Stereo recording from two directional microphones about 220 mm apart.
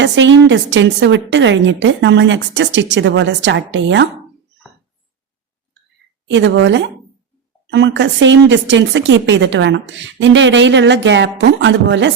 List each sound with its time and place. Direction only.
0.0 s a woman's voice: 55° right (ahead or behind)
6.2 s a woman's voice: 55° right (ahead or behind)